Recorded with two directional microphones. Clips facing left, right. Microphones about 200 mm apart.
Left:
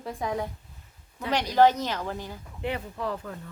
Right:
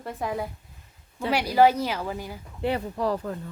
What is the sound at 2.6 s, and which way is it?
Speech, 35° right (ahead or behind).